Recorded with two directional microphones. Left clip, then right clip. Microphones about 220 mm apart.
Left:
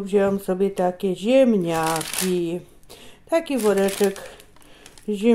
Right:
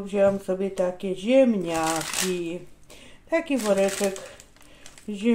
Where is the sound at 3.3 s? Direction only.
45° left (ahead or behind).